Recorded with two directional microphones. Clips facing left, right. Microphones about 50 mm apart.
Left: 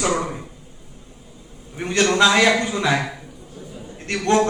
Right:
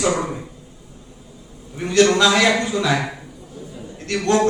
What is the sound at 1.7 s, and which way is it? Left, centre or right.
A man's voice, left.